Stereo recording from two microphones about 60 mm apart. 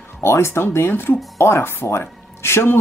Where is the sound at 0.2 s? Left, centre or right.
Left.